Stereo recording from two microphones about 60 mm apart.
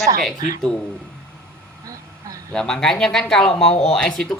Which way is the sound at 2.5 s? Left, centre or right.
Centre.